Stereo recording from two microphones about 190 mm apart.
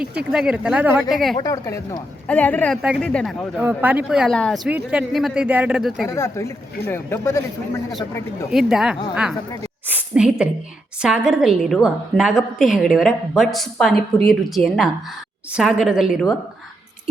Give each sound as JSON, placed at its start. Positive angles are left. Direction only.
{"t": 0.0, "sound": "a woman's voice", "side_deg": -5}
{"t": 1.4, "sound": "a man's voice", "side_deg": 15}
{"t": 3.6, "sound": "a woman's voice", "side_deg": -10}
{"t": 6.1, "sound": "a man's voice", "side_deg": 15}
{"t": 8.4, "sound": "a woman's voice", "side_deg": -5}